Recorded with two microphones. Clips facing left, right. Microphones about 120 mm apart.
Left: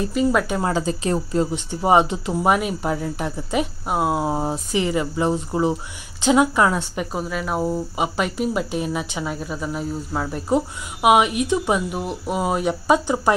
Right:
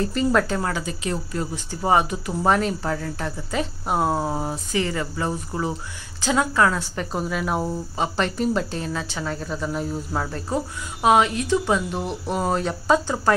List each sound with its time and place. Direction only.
0.0 s speech: 5° left (ahead or behind)
0.5 s speech: 20° left (ahead or behind)
0.8 s speech: 35° left (ahead or behind); by 3.6 s 15° left (ahead or behind)
3.8 s speech: 5° left (ahead or behind)
7.1 s speech: centre (ahead or behind)
10.3 s speech: 15° left (ahead or behind)
12.0 s speech: 5° left (ahead or behind)